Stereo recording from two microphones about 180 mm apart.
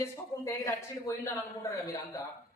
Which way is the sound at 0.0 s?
15° left (ahead or behind).